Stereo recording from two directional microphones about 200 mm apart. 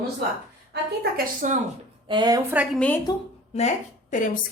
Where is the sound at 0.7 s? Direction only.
45° right (ahead or behind).